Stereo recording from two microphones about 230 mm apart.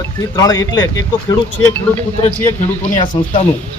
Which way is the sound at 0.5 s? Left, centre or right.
Left.